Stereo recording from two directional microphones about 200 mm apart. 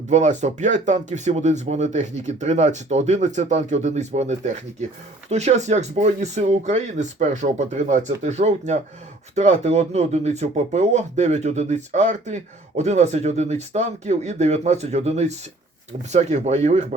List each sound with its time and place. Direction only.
0.1 s speech: 35° right (ahead or behind)